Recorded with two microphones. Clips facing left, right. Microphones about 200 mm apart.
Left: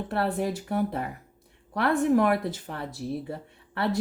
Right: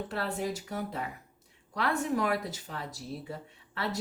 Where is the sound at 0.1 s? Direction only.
60° left (ahead or behind).